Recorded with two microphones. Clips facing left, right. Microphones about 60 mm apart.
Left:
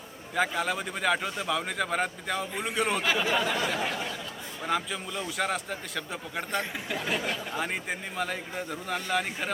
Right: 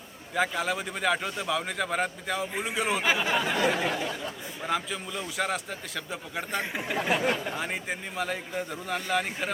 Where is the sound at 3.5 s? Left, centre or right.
Right.